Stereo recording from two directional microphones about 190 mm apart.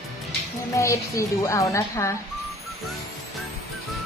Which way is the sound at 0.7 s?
15° left (ahead or behind).